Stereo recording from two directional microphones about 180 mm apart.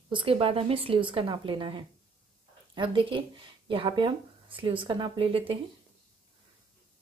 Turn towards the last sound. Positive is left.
turn(degrees=-30)  # may be behind; listen again after turning